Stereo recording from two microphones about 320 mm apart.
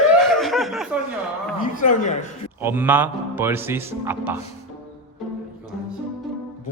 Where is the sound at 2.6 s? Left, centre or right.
Centre.